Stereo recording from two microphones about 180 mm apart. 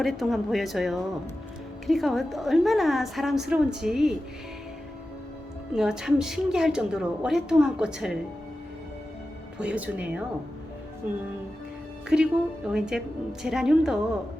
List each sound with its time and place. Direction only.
0.0 s a woman's voice: centre (ahead or behind)
5.7 s a woman's voice: 5° right (ahead or behind)
9.6 s speech: 5° right (ahead or behind)
12.0 s a woman's voice: 5° right (ahead or behind)